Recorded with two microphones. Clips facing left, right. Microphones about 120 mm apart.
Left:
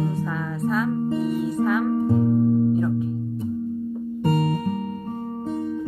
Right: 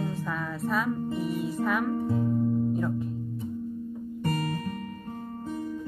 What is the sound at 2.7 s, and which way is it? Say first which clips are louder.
Music: left 6 dB; centre (ahead or behind).